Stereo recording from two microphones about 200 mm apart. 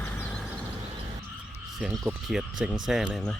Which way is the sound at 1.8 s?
5° right (ahead or behind).